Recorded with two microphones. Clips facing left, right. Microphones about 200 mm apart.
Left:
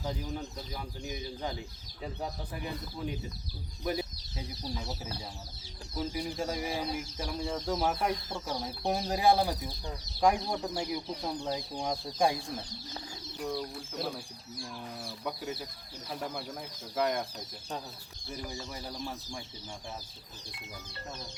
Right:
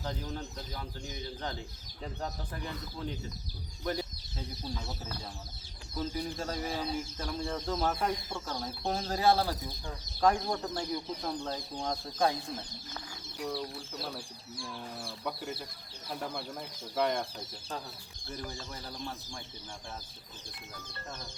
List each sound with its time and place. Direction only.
0.0 s speech: 10° left (ahead or behind)
6.0 s speech: 10° left (ahead or behind)
13.4 s speech: 5° right (ahead or behind)
14.5 s speech: 30° right (ahead or behind)
15.0 s speech: centre (ahead or behind)
18.3 s speech: 10° left (ahead or behind)